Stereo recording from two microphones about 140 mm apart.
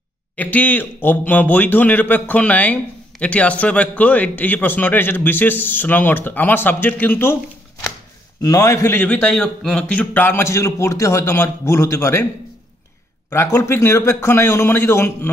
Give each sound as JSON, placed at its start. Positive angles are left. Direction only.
{"t": 0.4, "sound": "a man's voice", "side_deg": 10}
{"t": 8.4, "sound": "a man's voice", "side_deg": 25}
{"t": 13.3, "sound": "a man's voice", "side_deg": 20}